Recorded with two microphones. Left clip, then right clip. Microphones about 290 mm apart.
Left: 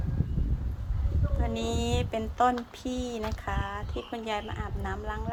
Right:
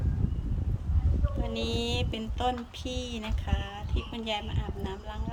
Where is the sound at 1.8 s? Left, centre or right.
Centre.